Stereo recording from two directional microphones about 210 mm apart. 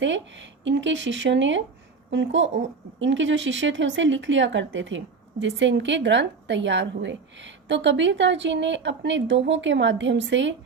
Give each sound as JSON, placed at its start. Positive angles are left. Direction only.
{"t": 0.0, "sound": "speech", "side_deg": -60}